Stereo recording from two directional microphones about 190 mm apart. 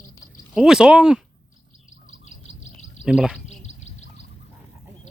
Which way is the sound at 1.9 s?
40° left (ahead or behind).